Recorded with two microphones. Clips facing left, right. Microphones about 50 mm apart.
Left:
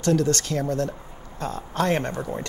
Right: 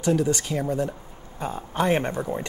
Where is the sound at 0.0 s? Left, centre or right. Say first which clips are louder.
Left 1 dB; centre.